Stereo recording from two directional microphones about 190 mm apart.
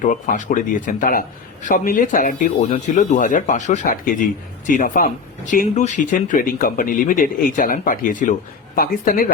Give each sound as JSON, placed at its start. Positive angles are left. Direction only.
{"t": 0.0, "sound": "speech", "side_deg": 40}